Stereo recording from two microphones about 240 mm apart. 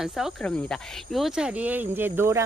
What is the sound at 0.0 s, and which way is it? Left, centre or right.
Speech, centre.